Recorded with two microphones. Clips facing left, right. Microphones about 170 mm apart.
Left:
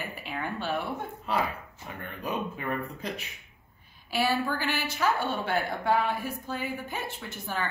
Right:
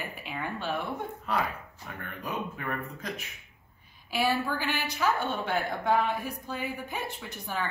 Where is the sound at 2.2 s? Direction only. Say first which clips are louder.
Left 3 dB; 20° left (ahead or behind).